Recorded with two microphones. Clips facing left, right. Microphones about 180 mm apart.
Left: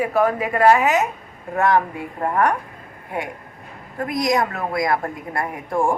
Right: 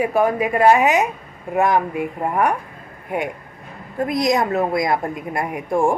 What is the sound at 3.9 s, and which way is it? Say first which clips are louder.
A woman's voice: right 2 dB; 25° right (ahead or behind).